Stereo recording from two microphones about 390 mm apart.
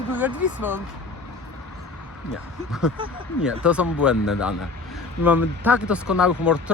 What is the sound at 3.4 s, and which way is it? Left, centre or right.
Speech, centre.